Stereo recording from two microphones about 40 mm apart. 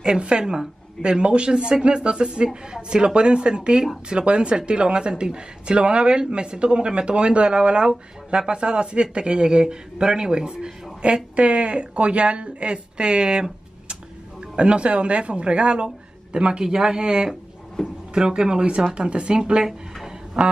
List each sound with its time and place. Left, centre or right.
0.2 s speech: right
17.8 s speech: centre
18.1 s speech: centre
20.4 s a sound: centre